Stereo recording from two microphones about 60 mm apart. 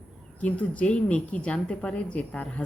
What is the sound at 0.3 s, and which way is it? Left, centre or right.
A woman's voice, left.